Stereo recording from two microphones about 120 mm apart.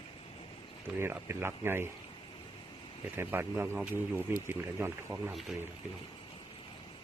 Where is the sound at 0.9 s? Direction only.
20° right (ahead or behind).